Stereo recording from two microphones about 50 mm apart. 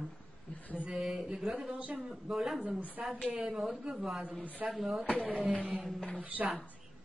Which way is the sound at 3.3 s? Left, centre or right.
Centre.